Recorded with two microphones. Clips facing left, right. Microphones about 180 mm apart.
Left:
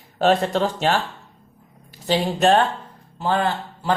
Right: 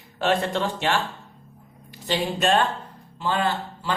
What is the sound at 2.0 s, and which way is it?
Speech, 40° left (ahead or behind).